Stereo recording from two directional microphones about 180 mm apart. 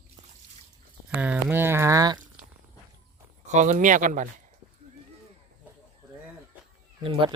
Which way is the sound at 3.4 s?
40° right (ahead or behind).